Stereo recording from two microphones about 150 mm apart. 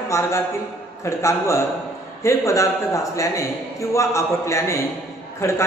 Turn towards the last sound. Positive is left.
turn(degrees=20)  # may be behind; listen again after turning